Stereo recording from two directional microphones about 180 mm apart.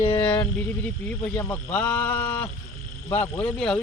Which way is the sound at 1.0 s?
5° left (ahead or behind).